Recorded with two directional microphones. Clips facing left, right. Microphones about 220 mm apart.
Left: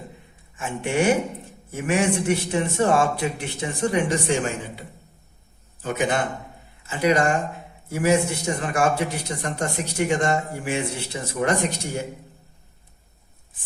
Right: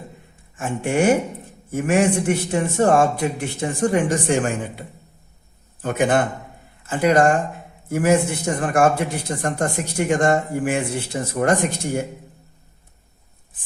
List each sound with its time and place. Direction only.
0.5 s a man's voice: 45° right (ahead or behind)
5.8 s a man's voice: 55° right (ahead or behind)